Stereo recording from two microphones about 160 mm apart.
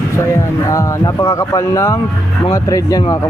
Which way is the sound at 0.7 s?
20° left (ahead or behind).